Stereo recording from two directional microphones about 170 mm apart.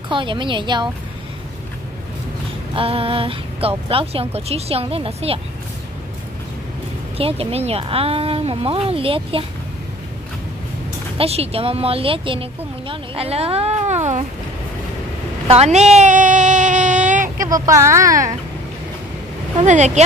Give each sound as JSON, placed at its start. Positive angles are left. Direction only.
{"t": 0.1, "sound": "speech", "side_deg": -30}
{"t": 2.7, "sound": "speech", "side_deg": -35}
{"t": 7.2, "sound": "speech", "side_deg": -35}
{"t": 11.1, "sound": "speech", "side_deg": -35}
{"t": 15.4, "sound": "a sound", "side_deg": -35}
{"t": 17.5, "sound": "speech", "side_deg": -20}
{"t": 19.6, "sound": "speech", "side_deg": -45}